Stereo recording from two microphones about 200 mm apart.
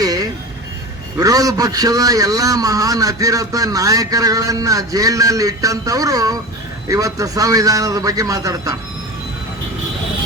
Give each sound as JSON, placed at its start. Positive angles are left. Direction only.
{"t": 0.0, "sound": "vehicle", "side_deg": -20}
{"t": 1.2, "sound": "a man's voice", "side_deg": -15}